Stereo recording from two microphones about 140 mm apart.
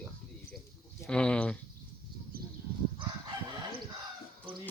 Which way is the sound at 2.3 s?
90° right.